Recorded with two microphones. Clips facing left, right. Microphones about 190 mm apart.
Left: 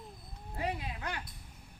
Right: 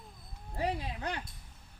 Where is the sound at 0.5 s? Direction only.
35° right (ahead or behind).